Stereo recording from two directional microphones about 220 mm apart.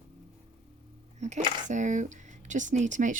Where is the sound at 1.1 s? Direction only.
30° right (ahead or behind).